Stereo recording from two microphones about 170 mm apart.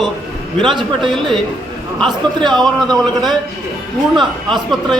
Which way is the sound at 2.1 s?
25° right (ahead or behind).